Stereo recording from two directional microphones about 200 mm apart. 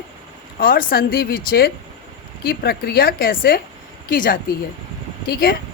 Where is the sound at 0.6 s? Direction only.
45° left (ahead or behind).